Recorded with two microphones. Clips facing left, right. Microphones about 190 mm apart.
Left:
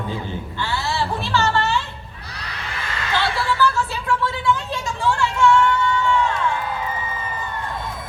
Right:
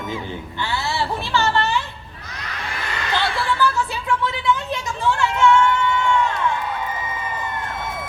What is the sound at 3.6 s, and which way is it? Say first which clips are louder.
Vehicle: left 2 dB; 20° right (ahead or behind).